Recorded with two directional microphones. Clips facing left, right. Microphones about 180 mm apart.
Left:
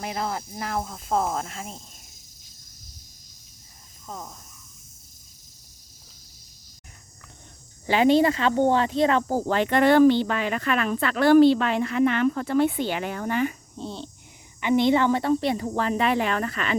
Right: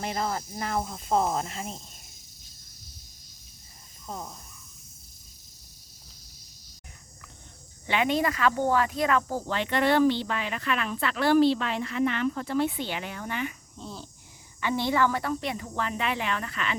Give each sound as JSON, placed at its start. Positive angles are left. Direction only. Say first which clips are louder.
{"t": 0.0, "sound": "speech", "louder": "left 1 dB", "side_deg": 5}
{"t": 4.0, "sound": "speech", "louder": "even", "side_deg": -5}
{"t": 7.9, "sound": "speech", "louder": "left 7 dB", "side_deg": 30}
{"t": 9.3, "sound": "speech", "louder": "left 6 dB", "side_deg": 45}